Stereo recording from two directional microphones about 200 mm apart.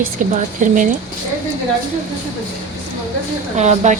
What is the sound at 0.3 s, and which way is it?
Speech, 40° right (ahead or behind).